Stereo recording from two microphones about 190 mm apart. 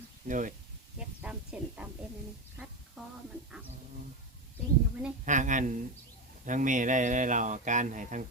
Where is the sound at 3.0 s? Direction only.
Centre (ahead or behind).